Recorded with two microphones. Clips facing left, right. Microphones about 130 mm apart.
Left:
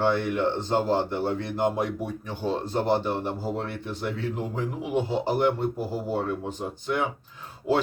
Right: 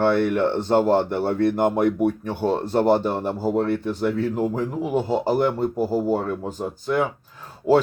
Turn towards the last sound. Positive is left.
turn(degrees=-45)  # may be behind; listen again after turning